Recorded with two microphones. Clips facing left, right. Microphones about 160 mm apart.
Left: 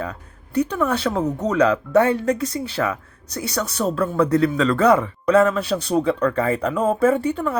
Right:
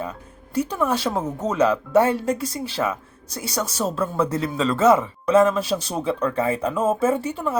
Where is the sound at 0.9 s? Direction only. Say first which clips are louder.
Left 2 dB; 10° right (ahead or behind).